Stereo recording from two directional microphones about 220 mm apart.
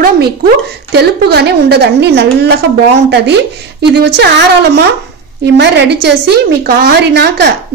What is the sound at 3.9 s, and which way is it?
A woman's voice, 50° right (ahead or behind).